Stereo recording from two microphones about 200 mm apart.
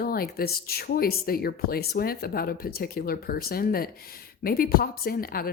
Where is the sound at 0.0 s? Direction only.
50° left (ahead or behind).